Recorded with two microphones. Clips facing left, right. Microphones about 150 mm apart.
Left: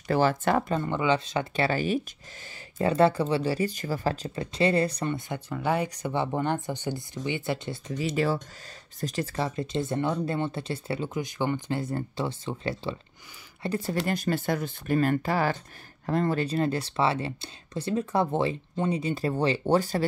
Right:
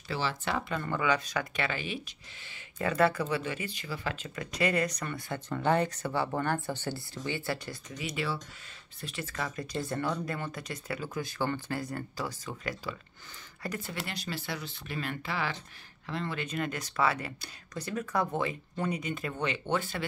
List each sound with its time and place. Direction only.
0.1 s speech: 50° left (ahead or behind)
0.7 s speech: 25° left (ahead or behind); by 2.0 s 40° left (ahead or behind)
2.8 s speech: 30° left (ahead or behind)
5.5 s speech: 10° left (ahead or behind)
8.2 s speech: 40° left (ahead or behind)
11.1 s speech: 15° left (ahead or behind); by 20.1 s 40° left (ahead or behind)